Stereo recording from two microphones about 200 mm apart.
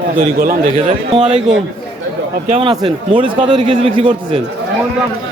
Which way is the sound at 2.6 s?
20° right (ahead or behind).